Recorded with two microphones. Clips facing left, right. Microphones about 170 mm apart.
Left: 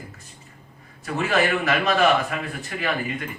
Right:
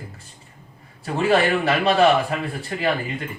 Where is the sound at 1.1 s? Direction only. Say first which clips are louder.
Right 3 dB; 30° right (ahead or behind).